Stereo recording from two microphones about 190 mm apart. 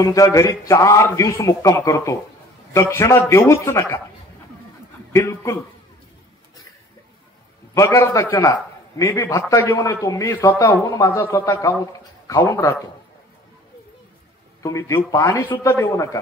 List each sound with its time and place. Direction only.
0.0 s a man's voice: 15° left (ahead or behind)
5.1 s a man's voice: 15° left (ahead or behind)
7.7 s a man's voice: 15° left (ahead or behind)
14.6 s a man's voice: 15° left (ahead or behind)